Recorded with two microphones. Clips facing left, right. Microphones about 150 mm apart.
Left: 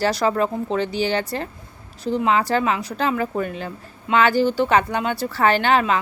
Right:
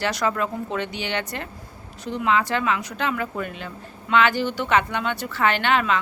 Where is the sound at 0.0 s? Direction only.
30° left (ahead or behind).